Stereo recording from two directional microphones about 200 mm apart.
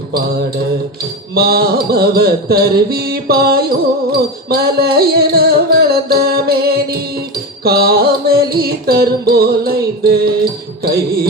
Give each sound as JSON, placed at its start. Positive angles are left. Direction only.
{"t": 1.4, "sound": "music", "side_deg": -50}